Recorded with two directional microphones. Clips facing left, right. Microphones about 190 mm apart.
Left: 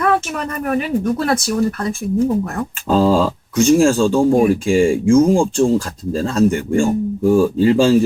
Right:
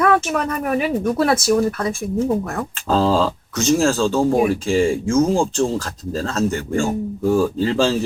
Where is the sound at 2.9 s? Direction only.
10° left (ahead or behind).